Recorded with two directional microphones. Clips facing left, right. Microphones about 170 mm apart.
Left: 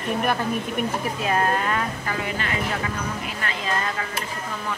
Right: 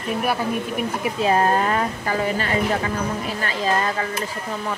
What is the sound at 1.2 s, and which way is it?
Speech, 30° right (ahead or behind).